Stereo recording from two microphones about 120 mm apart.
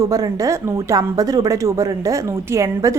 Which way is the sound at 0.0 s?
30° right (ahead or behind).